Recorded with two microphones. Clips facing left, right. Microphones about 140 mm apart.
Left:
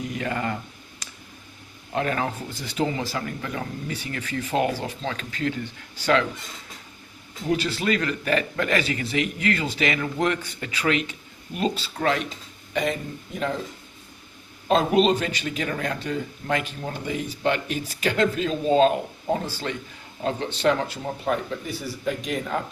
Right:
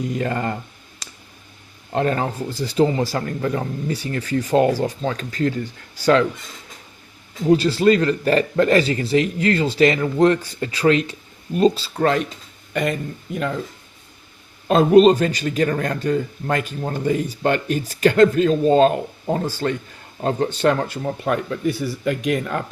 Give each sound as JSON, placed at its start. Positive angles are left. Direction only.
{"t": 0.2, "sound": "a man's voice", "side_deg": -40}
{"t": 1.9, "sound": "a man's voice", "side_deg": -35}
{"t": 7.5, "sound": "a man's voice", "side_deg": -35}
{"t": 14.7, "sound": "speech", "side_deg": -45}